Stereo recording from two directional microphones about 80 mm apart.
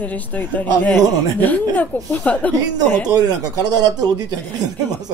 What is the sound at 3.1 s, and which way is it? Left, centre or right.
Speech, right.